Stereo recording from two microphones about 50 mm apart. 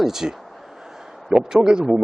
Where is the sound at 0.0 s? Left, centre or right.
Centre.